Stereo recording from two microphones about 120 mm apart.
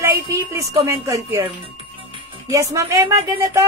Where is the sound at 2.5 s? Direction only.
25° right (ahead or behind).